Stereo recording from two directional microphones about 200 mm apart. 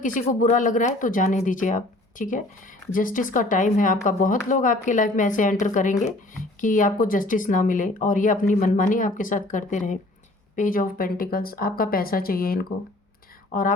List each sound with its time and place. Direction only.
0.0 s speech: 45° left (ahead or behind)